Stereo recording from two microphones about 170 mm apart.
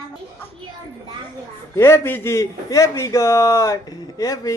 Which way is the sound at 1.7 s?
15° left (ahead or behind).